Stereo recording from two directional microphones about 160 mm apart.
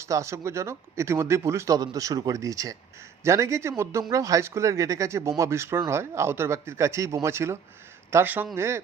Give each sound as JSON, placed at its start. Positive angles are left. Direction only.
{"t": 0.0, "sound": "speech", "side_deg": -20}